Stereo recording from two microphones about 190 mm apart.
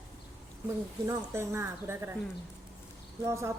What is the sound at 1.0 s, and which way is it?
A woman's voice, 15° right (ahead or behind).